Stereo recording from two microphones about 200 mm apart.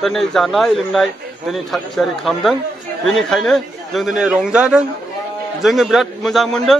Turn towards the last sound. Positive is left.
turn(degrees=0)  # may be behind; listen again after turning